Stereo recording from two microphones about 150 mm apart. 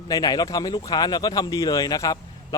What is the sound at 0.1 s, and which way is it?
Speech, 25° left (ahead or behind).